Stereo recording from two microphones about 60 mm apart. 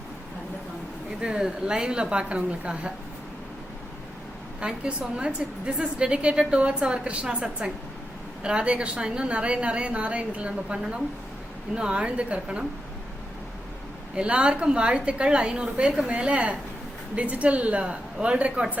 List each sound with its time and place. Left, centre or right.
1.2 s a woman's voice: centre
4.6 s a woman's voice: centre
8.4 s a woman's voice: centre
14.2 s a woman's voice: centre